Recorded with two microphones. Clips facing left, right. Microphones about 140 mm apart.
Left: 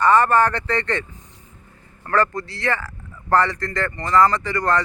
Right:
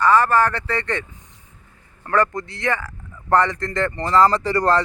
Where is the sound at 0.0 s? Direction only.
Centre (ahead or behind).